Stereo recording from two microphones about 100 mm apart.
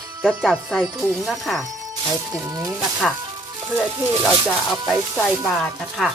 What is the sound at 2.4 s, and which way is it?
Speech, 35° right (ahead or behind).